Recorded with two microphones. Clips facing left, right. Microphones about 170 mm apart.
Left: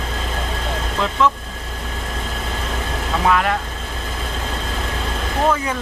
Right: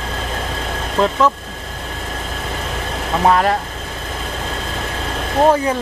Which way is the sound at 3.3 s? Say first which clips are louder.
Right 4 dB; 35° right (ahead or behind).